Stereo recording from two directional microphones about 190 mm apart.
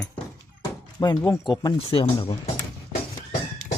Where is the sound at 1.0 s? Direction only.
20° left (ahead or behind).